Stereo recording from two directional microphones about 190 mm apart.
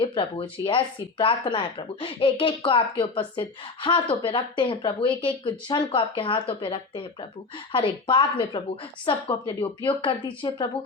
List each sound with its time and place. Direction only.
0.0 s a woman's voice: 30° left (ahead or behind)